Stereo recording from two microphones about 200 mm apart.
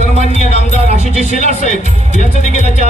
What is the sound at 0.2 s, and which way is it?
Music, 35° left (ahead or behind).